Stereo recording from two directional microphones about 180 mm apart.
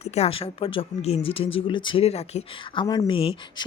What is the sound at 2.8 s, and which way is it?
Speech, 20° left (ahead or behind).